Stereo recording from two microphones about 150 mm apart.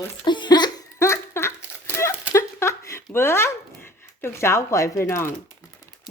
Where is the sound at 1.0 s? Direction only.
15° left (ahead or behind).